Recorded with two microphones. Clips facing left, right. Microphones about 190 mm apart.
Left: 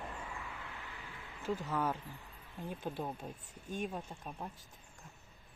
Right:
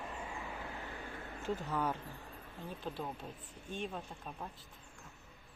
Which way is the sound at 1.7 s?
5° left (ahead or behind).